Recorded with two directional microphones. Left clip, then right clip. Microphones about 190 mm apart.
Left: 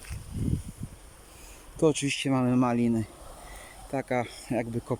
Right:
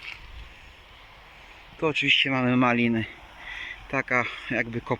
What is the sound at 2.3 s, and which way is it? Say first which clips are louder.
Speech: right 3 dB; 10° left (ahead or behind).